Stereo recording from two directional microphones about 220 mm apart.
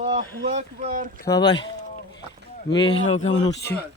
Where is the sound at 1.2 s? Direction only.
15° left (ahead or behind).